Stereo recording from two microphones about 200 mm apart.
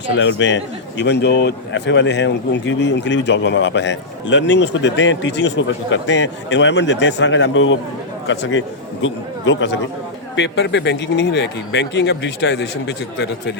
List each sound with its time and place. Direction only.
0.2 s a man's voice: 65° left (ahead or behind)